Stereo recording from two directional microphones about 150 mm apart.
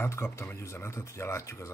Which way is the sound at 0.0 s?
15° left (ahead or behind).